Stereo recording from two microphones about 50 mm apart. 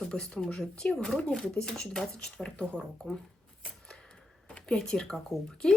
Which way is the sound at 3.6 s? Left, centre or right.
Centre.